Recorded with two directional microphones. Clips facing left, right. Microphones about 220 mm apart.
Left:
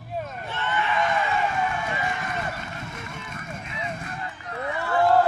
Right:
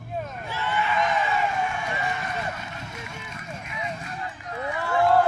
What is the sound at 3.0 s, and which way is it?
Vehicle, 50° left (ahead or behind).